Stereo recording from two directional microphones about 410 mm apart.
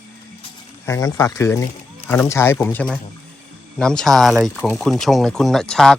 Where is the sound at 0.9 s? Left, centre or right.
Centre.